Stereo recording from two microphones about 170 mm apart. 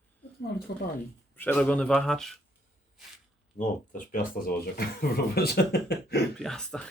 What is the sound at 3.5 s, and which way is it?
Speech, 50° left (ahead or behind).